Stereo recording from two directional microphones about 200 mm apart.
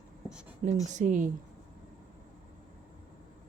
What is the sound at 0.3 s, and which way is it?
Writing, 5° right (ahead or behind).